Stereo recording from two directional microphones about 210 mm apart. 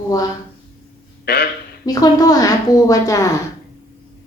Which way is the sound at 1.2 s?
50° left (ahead or behind).